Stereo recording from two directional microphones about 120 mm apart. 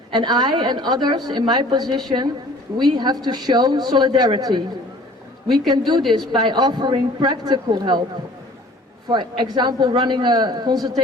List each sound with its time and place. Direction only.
0.1 s a woman's voice: 40° right (ahead or behind)
9.0 s a woman's voice: 40° right (ahead or behind)